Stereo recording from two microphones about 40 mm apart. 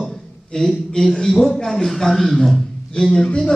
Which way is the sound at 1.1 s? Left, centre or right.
Centre.